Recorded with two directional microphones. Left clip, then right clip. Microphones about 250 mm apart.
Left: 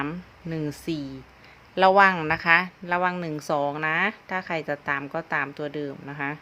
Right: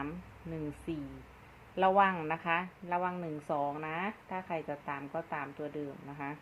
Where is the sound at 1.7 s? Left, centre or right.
Left.